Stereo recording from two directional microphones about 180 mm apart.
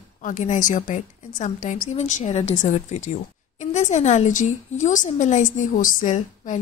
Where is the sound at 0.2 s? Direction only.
45° left (ahead or behind).